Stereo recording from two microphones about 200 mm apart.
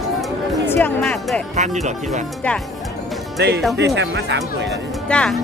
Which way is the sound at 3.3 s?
55° right (ahead or behind).